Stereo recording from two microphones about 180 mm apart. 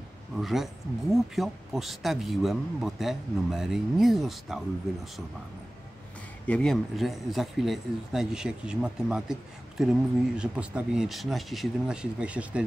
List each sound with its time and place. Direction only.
0.4 s speech: centre (ahead or behind)
6.4 s speech: 5° left (ahead or behind)